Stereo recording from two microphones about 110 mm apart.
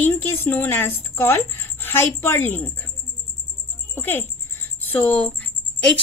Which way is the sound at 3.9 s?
20° left (ahead or behind).